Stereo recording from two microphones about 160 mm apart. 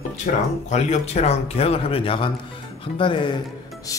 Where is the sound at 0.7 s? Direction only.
45° left (ahead or behind).